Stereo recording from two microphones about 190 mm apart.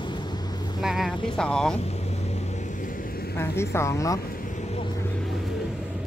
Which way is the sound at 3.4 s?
15° left (ahead or behind).